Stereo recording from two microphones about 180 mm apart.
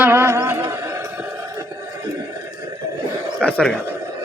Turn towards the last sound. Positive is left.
turn(degrees=5)  # may be behind; listen again after turning